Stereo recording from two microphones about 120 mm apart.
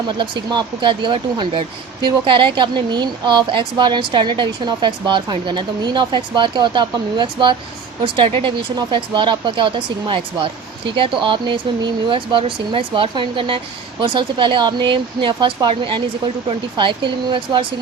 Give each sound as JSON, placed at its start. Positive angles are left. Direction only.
{"t": 0.2, "sound": "speech", "side_deg": -40}